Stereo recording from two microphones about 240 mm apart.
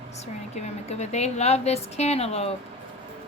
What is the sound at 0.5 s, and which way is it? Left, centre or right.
A woman's voice, left.